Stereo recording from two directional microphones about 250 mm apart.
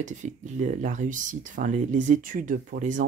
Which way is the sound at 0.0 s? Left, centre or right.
Right.